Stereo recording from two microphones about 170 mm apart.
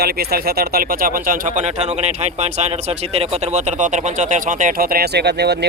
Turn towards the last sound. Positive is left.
turn(degrees=-75)  # may be behind; listen again after turning